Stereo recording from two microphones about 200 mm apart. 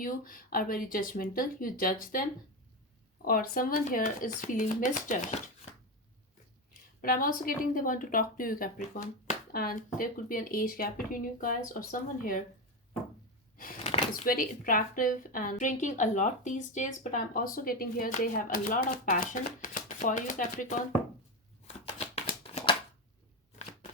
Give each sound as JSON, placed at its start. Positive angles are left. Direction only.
{"t": 0.0, "sound": "a woman's voice", "side_deg": 45}
{"t": 3.2, "sound": "a woman's voice", "side_deg": 45}
{"t": 7.0, "sound": "a woman's voice", "side_deg": 45}
{"t": 13.8, "sound": "a sound", "side_deg": 30}
{"t": 14.3, "sound": "a woman's voice", "side_deg": 45}
{"t": 21.9, "sound": "shuffling cards", "side_deg": 35}